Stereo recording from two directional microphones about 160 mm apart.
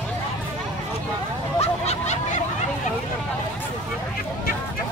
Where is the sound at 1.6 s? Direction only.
40° left (ahead or behind).